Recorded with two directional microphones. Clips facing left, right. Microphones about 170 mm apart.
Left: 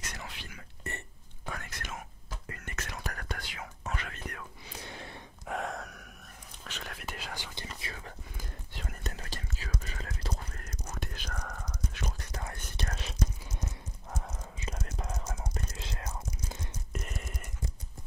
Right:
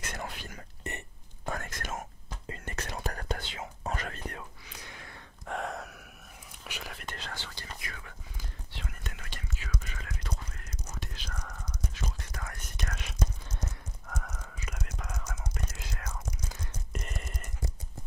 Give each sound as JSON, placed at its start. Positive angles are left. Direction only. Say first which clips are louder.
{"t": 0.1, "sound": "whispering", "louder": "right 5 dB", "side_deg": -50}
{"t": 0.8, "sound": "a sound", "louder": "right 2 dB", "side_deg": -20}
{"t": 1.4, "sound": "whispering", "louder": "right 5 dB", "side_deg": -45}
{"t": 2.4, "sound": "whispering", "louder": "right 4 dB", "side_deg": -30}
{"t": 3.9, "sound": "whispering", "louder": "right 2 dB", "side_deg": -40}
{"t": 4.7, "sound": "a sound", "louder": "left 5 dB", "side_deg": 30}
{"t": 5.5, "sound": "gasp", "louder": "even", "side_deg": 0}
{"t": 6.6, "sound": "whispering", "louder": "even", "side_deg": -10}
{"t": 7.8, "sound": "whispering", "louder": "left 2 dB", "side_deg": 30}
{"t": 8.4, "sound": "whispering", "louder": "left 1 dB", "side_deg": 45}
{"t": 12.4, "sound": "whispering", "louder": "left 1 dB", "side_deg": 30}
{"t": 16.9, "sound": "a sound", "louder": "even", "side_deg": 0}